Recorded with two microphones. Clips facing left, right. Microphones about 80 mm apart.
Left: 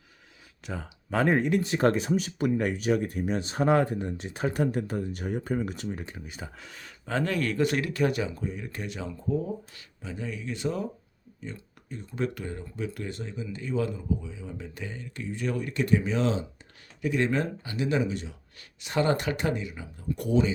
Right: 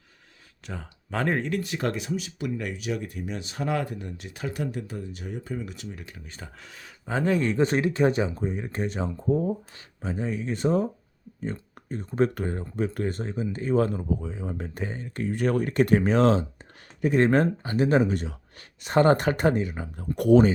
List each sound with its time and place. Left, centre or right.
0.6 s speech: centre
1.7 s speech: left
6.0 s speech: left
6.2 s speech: centre
7.0 s speech: centre; by 20.5 s right